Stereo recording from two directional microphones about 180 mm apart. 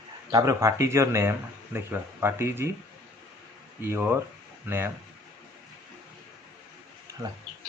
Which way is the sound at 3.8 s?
15° right (ahead or behind).